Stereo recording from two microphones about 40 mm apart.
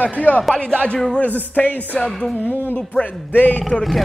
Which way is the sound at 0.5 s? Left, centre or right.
Centre.